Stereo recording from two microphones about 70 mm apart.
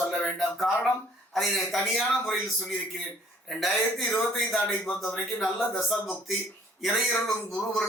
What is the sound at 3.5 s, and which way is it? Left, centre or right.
A man's voice, centre.